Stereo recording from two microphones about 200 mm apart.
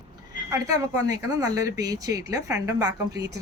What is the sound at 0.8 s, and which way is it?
A woman's voice, 15° right (ahead or behind).